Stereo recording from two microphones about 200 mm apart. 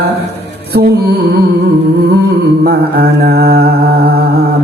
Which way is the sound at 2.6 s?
50° right (ahead or behind).